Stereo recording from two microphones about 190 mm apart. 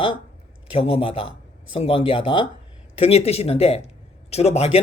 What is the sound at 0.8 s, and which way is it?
Speech, 30° left (ahead or behind).